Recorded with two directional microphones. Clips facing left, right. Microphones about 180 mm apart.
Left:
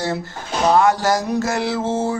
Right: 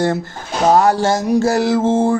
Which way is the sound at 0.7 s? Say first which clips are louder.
Right 2 dB; 40° right (ahead or behind).